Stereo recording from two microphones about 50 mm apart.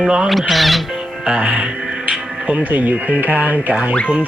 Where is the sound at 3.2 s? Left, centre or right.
Right.